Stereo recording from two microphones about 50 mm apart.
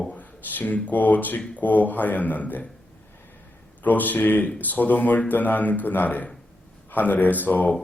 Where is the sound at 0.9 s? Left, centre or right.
Left.